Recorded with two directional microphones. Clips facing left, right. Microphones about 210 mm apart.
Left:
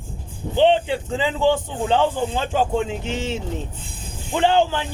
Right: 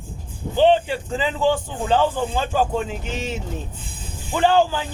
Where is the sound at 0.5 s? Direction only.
20° left (ahead or behind).